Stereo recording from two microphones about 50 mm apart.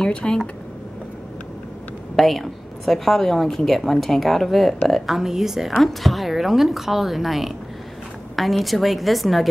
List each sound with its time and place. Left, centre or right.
0.1 s speech: centre
2.1 s a woman's voice: centre
5.1 s a woman's voice: centre